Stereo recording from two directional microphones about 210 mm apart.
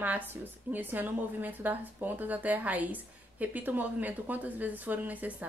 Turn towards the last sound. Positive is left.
turn(degrees=-5)  # may be behind; listen again after turning